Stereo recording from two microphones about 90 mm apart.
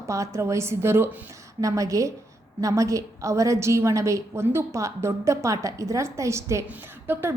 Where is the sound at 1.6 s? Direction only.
40° right (ahead or behind).